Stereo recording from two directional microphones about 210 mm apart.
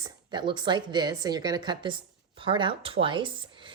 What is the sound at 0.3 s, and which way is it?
A woman's voice, 20° right (ahead or behind).